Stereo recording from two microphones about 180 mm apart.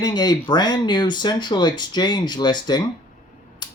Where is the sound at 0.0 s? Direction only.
25° left (ahead or behind).